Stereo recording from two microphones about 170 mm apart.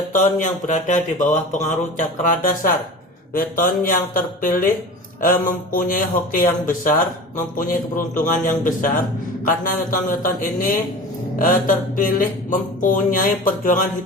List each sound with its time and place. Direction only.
0.1 s speech: 50° left (ahead or behind)